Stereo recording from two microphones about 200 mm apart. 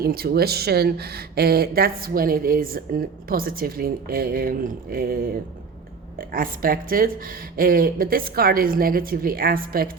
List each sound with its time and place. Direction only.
0.0 s speech: 50° right (ahead or behind)